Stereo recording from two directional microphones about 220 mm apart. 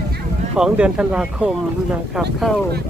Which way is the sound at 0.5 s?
5° right (ahead or behind).